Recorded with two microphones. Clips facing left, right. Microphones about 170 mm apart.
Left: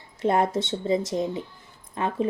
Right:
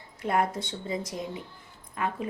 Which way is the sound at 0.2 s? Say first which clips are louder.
Left 5 dB; 25° left (ahead or behind).